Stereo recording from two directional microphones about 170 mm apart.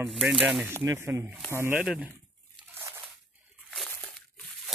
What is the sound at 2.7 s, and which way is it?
Crunch, 15° right (ahead or behind).